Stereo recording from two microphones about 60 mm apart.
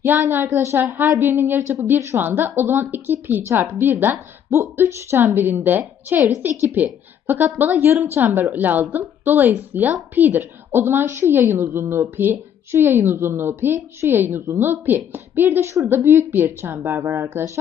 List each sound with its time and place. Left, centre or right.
0.4 s speech: right
0.8 s a woman's voice: right
10.8 s a woman's voice: right
14.3 s a woman's voice: right